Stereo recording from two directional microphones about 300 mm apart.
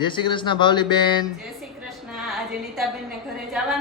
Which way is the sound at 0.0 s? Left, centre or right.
Centre.